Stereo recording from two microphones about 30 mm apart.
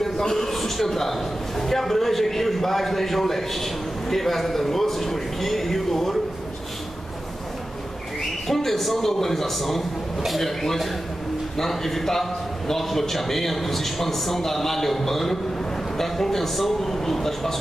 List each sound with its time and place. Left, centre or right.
0.0 s a sound: centre
0.8 s a man's voice: centre
8.5 s a man's voice: centre